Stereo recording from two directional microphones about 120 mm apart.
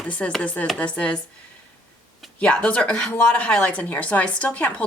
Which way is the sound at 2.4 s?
10° left (ahead or behind).